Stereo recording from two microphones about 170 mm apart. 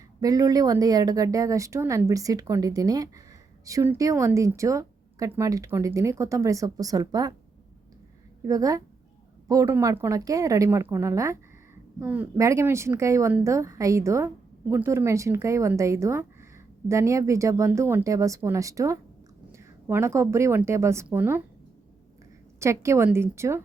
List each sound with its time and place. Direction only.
0.2 s a woman's voice: 20° right (ahead or behind)
8.4 s a woman's voice: 20° right (ahead or behind)
22.6 s speech: 15° right (ahead or behind)